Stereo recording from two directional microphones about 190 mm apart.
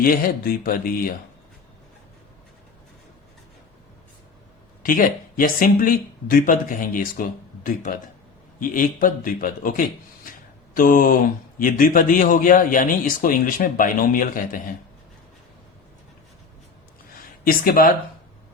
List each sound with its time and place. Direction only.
0.0 s speech: 50° left (ahead or behind)
4.8 s speech: 45° left (ahead or behind)
10.3 s a sound: 45° left (ahead or behind)
10.8 s speech: 45° left (ahead or behind)
17.4 s speech: 50° left (ahead or behind)